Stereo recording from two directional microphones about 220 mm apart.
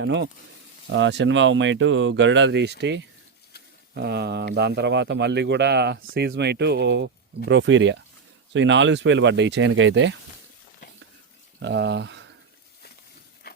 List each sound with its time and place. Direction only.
0.0 s a man's voice: 55° right (ahead or behind)
11.6 s speech: 50° right (ahead or behind)